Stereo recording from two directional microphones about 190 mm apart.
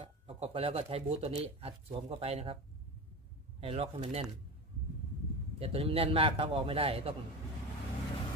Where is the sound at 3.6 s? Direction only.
30° right (ahead or behind).